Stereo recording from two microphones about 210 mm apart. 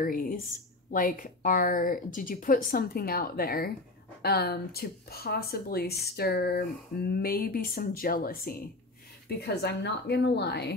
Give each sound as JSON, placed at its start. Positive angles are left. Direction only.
{"t": 0.0, "sound": "a woman's voice", "side_deg": 40}